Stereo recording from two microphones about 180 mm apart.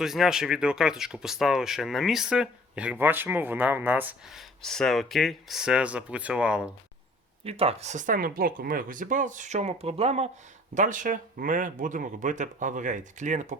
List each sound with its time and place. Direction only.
0.0 s speech: centre (ahead or behind)
7.4 s speech: 35° right (ahead or behind)
10.8 s speech: 45° right (ahead or behind)